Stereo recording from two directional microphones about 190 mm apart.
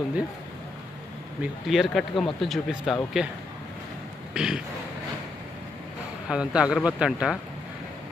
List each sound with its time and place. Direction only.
1.4 s speech: centre (ahead or behind)
4.4 s speech: 5° right (ahead or behind)
6.2 s speech: 5° right (ahead or behind)